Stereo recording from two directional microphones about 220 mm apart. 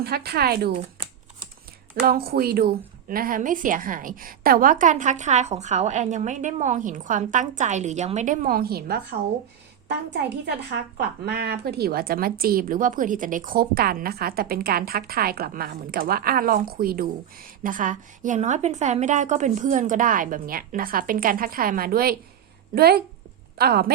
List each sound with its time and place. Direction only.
0.0 s speech: 45° right (ahead or behind)
0.8 s shuffling cards: 25° right (ahead or behind)
2.0 s a woman's voice: 45° right (ahead or behind)